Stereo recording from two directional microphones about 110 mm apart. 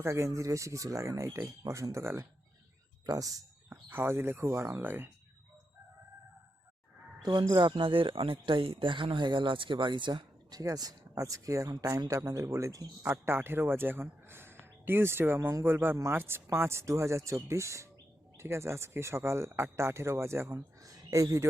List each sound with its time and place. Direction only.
0.0 s speech: 25° right (ahead or behind)
3.7 s speech: 20° right (ahead or behind)
7.2 s speech: 45° right (ahead or behind)